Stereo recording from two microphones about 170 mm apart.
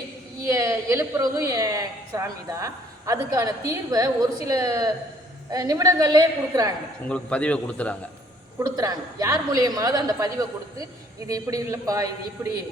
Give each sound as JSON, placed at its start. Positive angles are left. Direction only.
{"t": 0.4, "sound": "a woman's voice", "side_deg": -20}
{"t": 7.1, "sound": "a man's voice", "side_deg": 5}
{"t": 8.5, "sound": "a woman's voice", "side_deg": -20}